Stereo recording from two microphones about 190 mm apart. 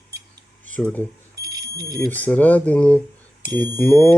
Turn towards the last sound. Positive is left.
turn(degrees=10)  # may be behind; listen again after turning